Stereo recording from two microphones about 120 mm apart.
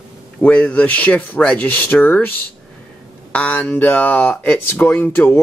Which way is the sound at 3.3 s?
10° left (ahead or behind).